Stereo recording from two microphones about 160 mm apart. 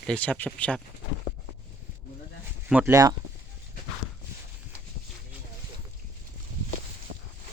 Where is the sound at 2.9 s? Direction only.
20° right (ahead or behind).